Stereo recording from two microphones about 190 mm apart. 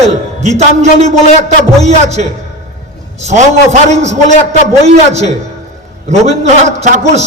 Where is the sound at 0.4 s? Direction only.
35° right (ahead or behind).